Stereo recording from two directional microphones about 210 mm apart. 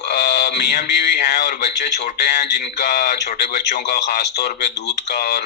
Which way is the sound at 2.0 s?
50° left (ahead or behind).